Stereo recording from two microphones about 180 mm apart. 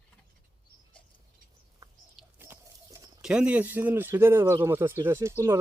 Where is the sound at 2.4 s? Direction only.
15° right (ahead or behind).